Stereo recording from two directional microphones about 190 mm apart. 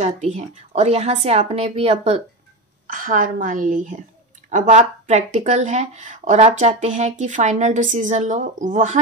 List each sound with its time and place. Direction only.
0.0 s speech: 35° right (ahead or behind)
2.9 s a woman's voice: 45° right (ahead or behind)